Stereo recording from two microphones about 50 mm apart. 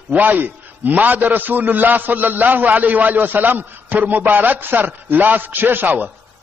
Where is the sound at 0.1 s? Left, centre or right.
Right.